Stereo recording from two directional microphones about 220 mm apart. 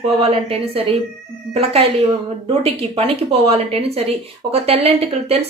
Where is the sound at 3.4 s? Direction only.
25° right (ahead or behind).